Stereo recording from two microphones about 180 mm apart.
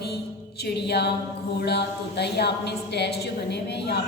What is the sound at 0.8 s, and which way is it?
A woman's voice, 65° left (ahead or behind).